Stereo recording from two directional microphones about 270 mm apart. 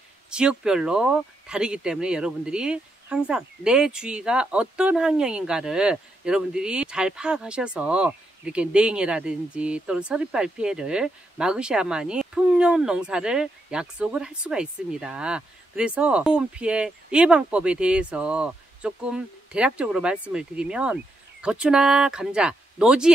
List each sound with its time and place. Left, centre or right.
0.3 s speech: centre